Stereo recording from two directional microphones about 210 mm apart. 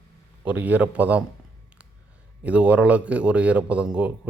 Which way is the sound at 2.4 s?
5° right (ahead or behind).